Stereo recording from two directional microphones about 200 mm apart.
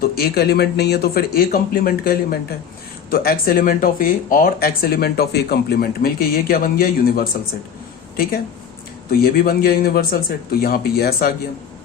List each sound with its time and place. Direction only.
0.0 s speech: 50° left (ahead or behind)